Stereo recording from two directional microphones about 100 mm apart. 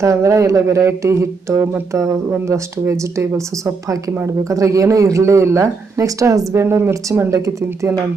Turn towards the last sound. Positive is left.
turn(degrees=-35)  # may be behind; listen again after turning